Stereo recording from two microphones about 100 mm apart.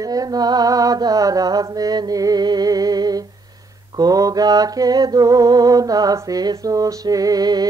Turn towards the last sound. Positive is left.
turn(degrees=-40)  # may be behind; listen again after turning